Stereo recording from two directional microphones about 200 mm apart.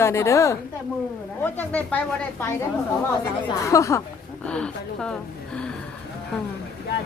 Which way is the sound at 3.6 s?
15° left (ahead or behind).